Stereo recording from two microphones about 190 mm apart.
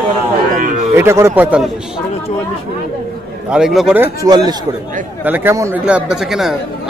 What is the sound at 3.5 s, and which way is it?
Speech, 5° right (ahead or behind).